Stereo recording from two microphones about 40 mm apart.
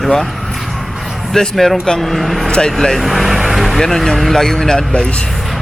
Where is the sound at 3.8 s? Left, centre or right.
Centre.